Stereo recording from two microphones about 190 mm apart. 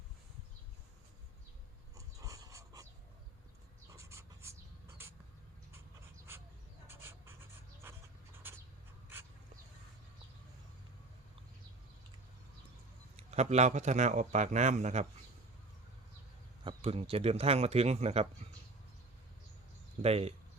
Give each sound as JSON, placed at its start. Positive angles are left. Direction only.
{"t": 2.0, "sound": "dog", "side_deg": -15}
{"t": 3.9, "sound": "writing", "side_deg": -15}
{"t": 6.8, "sound": "writing", "side_deg": -10}
{"t": 7.9, "sound": "a sound", "side_deg": -10}
{"t": 8.4, "sound": "writing", "side_deg": -10}
{"t": 13.1, "sound": "a man's voice", "side_deg": -35}
{"t": 16.6, "sound": "a man's voice", "side_deg": -30}
{"t": 20.0, "sound": "a man's voice", "side_deg": -35}